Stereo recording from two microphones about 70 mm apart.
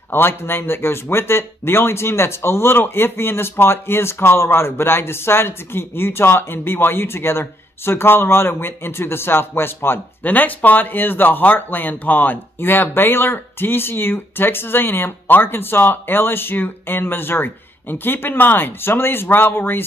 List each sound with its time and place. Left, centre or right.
0.1 s speech: left